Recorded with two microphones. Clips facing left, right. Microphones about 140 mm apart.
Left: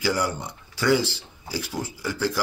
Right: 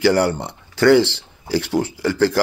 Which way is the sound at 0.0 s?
70° right (ahead or behind).